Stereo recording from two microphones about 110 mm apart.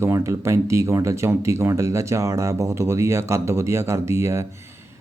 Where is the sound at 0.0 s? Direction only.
20° right (ahead or behind).